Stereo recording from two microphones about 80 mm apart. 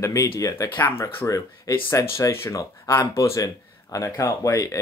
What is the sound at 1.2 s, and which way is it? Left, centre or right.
Speech, left.